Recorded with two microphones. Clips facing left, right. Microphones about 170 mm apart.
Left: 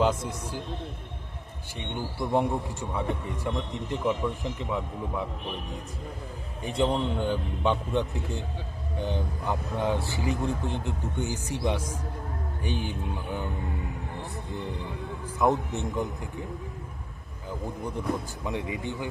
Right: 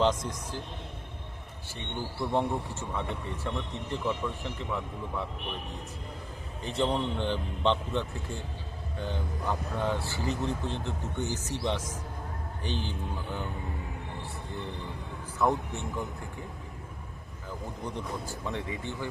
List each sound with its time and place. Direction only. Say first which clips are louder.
0.0 s a man's voice: left 1 dB; 10° left (ahead or behind)
2.1 s a man's voice: left 3 dB; 15° left (ahead or behind)
6.7 s a man's voice: left 3 dB; 10° left (ahead or behind)
15.4 s a man's voice: left 3 dB; 20° left (ahead or behind)
18.4 s a man's voice: left 4 dB; 15° left (ahead or behind)